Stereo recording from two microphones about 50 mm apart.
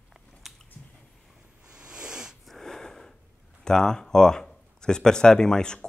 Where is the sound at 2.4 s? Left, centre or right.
Centre.